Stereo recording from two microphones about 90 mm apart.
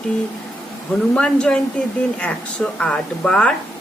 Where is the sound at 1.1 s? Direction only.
10° left (ahead or behind).